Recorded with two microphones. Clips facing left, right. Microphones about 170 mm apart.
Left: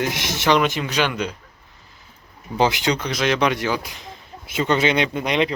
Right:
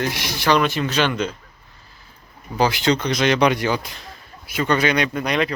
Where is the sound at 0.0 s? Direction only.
20° left (ahead or behind).